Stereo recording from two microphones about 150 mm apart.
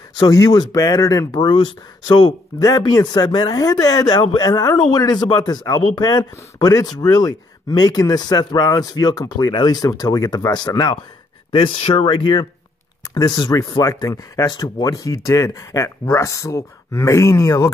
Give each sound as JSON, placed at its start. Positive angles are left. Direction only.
{"t": 0.2, "sound": "speech", "side_deg": 25}
{"t": 13.1, "sound": "speech", "side_deg": 20}